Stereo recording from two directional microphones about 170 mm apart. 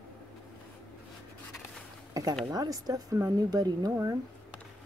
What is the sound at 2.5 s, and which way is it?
Speech, 20° right (ahead or behind).